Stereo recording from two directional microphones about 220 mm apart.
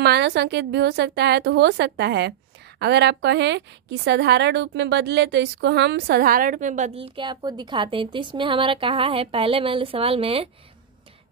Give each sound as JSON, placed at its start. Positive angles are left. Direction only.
{"t": 0.0, "sound": "a woman's voice", "side_deg": -50}